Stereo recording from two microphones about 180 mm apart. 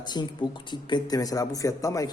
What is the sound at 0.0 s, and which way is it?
A man's voice, 25° left (ahead or behind).